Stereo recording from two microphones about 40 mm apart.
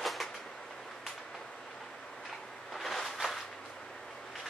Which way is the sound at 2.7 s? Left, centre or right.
Centre.